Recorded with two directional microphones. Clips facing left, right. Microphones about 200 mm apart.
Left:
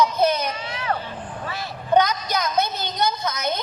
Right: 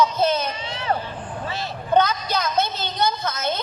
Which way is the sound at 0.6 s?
25° right (ahead or behind).